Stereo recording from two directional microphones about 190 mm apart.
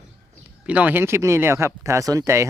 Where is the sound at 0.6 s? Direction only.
10° right (ahead or behind).